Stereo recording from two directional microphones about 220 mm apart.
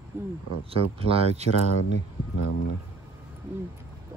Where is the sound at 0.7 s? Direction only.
25° right (ahead or behind).